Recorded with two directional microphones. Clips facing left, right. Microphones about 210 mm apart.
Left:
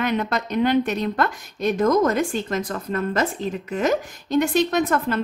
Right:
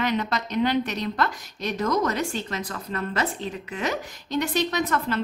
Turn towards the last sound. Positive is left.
turn(degrees=50)  # may be behind; listen again after turning